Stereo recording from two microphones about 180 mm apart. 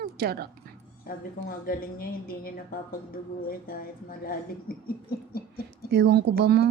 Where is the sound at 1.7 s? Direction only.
55° left (ahead or behind).